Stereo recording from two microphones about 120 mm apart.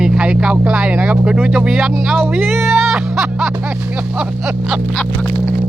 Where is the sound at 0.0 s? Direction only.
5° right (ahead or behind).